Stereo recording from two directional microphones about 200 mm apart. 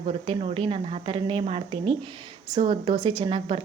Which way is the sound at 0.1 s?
30° right (ahead or behind).